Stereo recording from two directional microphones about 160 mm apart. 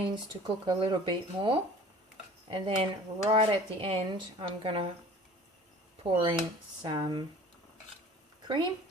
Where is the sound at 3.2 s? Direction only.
35° right (ahead or behind).